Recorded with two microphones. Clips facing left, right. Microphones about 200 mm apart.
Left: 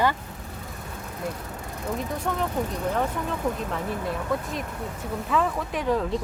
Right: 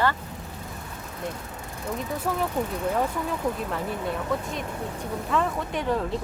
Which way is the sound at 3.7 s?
Centre (ahead or behind).